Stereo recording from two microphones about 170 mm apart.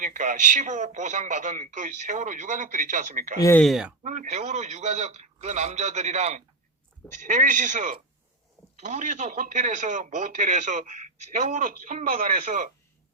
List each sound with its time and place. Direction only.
0.0 s speech: 45° right (ahead or behind)
3.6 s speech: centre (ahead or behind)
4.0 s speech: 50° right (ahead or behind)